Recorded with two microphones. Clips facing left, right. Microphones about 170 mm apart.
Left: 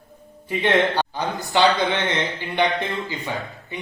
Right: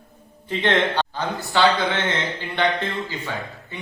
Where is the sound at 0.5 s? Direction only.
10° left (ahead or behind).